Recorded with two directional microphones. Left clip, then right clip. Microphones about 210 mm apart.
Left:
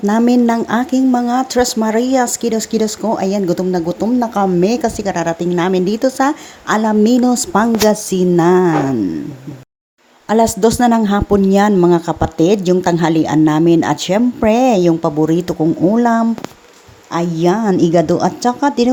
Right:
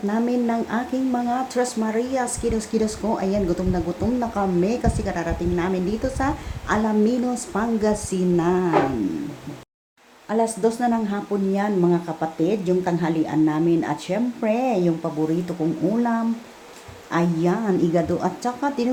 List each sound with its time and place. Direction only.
0.1 s speech: 50° left (ahead or behind)
10.2 s speech: 50° left (ahead or behind)
17.1 s speech: 30° left (ahead or behind)